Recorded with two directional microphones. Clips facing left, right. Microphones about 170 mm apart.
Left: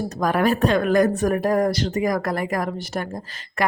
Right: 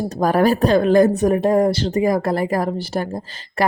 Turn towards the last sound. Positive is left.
turn(degrees=-30)  # may be behind; listen again after turning